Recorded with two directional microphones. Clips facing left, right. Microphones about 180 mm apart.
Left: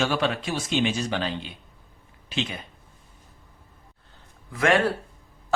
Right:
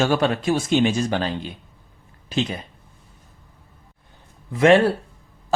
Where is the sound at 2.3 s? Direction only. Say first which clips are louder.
Right 6 dB; 40° right (ahead or behind).